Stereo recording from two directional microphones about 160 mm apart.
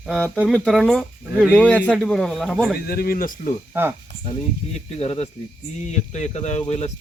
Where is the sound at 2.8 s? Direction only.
70° left (ahead or behind).